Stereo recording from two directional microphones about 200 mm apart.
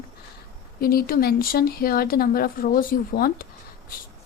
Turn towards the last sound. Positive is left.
turn(degrees=45)  # may be behind; listen again after turning